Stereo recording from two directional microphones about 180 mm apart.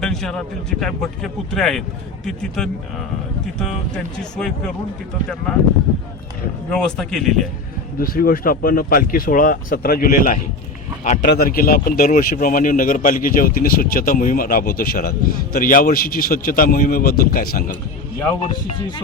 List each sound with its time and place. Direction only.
0.0 s speech: 5° left (ahead or behind)
6.7 s speech: 5° left (ahead or behind)
7.9 s speech: 55° left (ahead or behind)
11.3 s speech: 55° left (ahead or behind)